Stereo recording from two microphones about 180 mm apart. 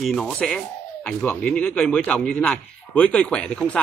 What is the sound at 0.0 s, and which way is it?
A man's voice, centre (ahead or behind).